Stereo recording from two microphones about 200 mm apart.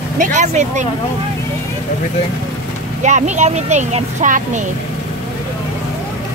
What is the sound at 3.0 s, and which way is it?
Speech, 35° right (ahead or behind).